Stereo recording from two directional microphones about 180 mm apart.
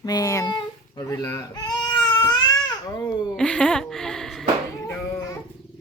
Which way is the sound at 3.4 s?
5° left (ahead or behind).